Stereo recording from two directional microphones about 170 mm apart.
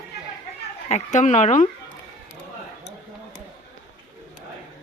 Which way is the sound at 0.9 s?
45° left (ahead or behind).